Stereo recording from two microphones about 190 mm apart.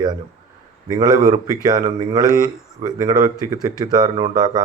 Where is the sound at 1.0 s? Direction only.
45° right (ahead or behind).